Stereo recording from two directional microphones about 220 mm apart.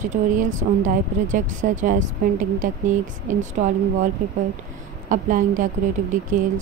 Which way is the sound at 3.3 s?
35° right (ahead or behind).